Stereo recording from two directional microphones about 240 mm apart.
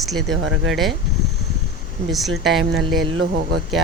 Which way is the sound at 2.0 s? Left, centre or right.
Centre.